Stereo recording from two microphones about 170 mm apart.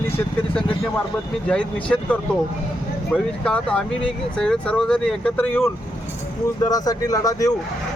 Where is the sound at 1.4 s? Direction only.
5° left (ahead or behind).